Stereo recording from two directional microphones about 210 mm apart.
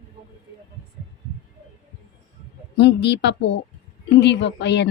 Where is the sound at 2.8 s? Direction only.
55° left (ahead or behind).